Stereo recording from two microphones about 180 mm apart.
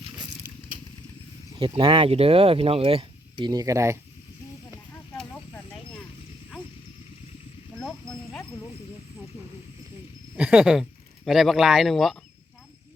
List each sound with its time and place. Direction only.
1.5 s speech: 30° right (ahead or behind)
5.1 s snake: 10° left (ahead or behind)
7.8 s a sound: centre (ahead or behind)
10.3 s speech: 5° right (ahead or behind)